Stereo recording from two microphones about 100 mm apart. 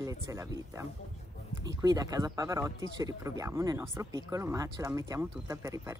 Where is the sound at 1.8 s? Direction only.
40° right (ahead or behind).